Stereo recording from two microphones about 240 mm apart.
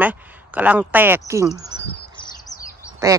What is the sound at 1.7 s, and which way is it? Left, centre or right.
Chirp, centre.